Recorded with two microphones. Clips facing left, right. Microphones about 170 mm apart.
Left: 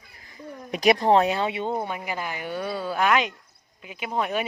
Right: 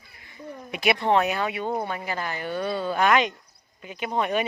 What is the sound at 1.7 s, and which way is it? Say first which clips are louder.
Speech: even; 15° left (ahead or behind).